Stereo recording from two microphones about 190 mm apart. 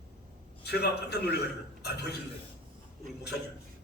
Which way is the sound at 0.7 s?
60° left (ahead or behind).